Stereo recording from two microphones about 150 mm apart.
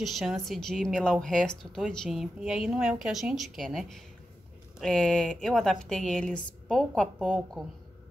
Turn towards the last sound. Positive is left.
turn(degrees=0)  # may be behind; listen again after turning